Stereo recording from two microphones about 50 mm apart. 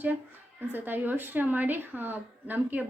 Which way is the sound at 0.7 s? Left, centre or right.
Right.